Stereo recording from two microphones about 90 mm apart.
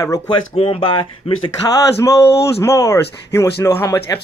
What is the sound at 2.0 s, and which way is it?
Speech, 35° left (ahead or behind).